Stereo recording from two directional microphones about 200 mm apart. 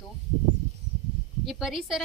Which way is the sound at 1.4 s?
Centre (ahead or behind).